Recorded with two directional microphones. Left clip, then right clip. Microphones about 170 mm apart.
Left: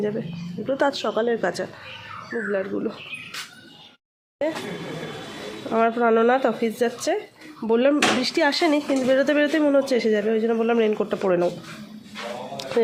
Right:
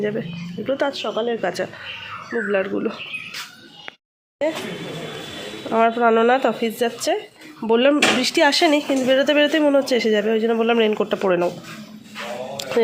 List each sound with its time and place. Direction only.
0.1 s speech: 5° left (ahead or behind)
0.8 s speech: 35° left (ahead or behind)
1.4 s speech: 15° left (ahead or behind)
2.5 s speech: centre (ahead or behind)
5.7 s speech: centre (ahead or behind)